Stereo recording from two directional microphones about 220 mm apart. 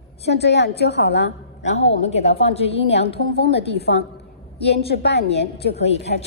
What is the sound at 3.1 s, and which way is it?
A woman's voice, 50° left (ahead or behind).